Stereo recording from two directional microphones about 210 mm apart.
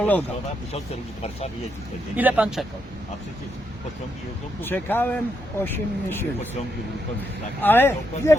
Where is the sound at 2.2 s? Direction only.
5° right (ahead or behind).